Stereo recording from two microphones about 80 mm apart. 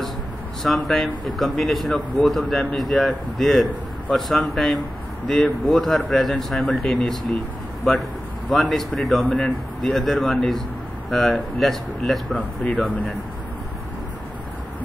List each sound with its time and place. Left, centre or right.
0.7 s speech: centre
8.5 s speech: centre
12.4 s speech: centre